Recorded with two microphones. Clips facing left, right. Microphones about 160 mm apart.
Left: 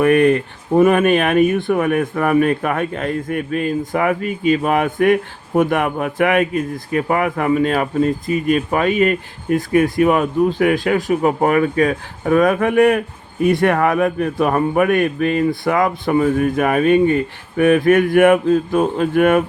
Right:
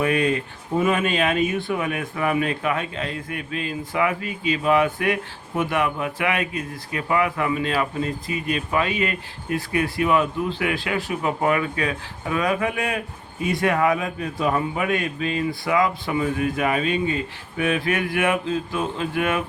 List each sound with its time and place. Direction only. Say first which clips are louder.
0.0 s speech: left 8 dB; 55° left (ahead or behind)